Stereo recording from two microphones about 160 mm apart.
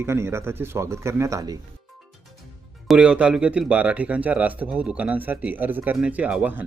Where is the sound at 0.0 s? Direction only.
15° right (ahead or behind).